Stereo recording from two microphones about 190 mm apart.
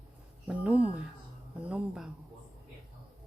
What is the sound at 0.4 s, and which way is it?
Speech, 5° right (ahead or behind).